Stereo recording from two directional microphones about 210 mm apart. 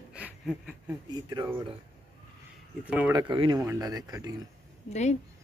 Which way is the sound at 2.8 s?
5° right (ahead or behind).